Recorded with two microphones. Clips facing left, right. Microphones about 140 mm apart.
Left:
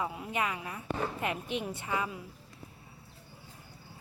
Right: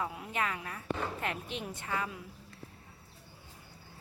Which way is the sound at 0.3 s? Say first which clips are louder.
Left 1 dB; 10° left (ahead or behind).